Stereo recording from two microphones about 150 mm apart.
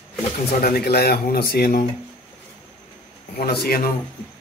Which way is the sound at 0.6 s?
90° left.